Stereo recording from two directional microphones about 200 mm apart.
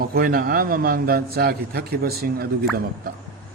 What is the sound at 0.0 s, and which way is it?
A man's voice, 45° right (ahead or behind).